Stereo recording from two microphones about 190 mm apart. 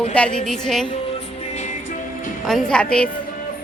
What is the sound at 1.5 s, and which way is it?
Music, 40° left (ahead or behind).